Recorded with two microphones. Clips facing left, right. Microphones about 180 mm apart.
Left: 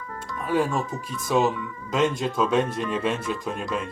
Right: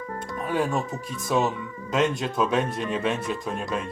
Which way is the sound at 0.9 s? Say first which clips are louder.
Left 1 dB; 40° right (ahead or behind).